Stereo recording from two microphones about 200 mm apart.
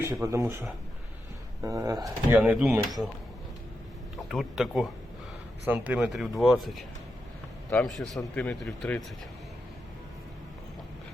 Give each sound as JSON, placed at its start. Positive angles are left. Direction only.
{"t": 0.1, "sound": "speech", "side_deg": -15}
{"t": 1.6, "sound": "speech", "side_deg": -15}
{"t": 4.3, "sound": "speech", "side_deg": 0}